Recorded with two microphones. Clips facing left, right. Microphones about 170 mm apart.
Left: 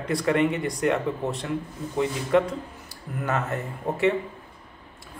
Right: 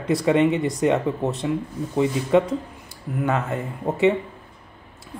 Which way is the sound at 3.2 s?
15° right (ahead or behind).